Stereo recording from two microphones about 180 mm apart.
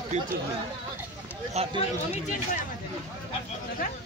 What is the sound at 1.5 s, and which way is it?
Speech, 30° right (ahead or behind).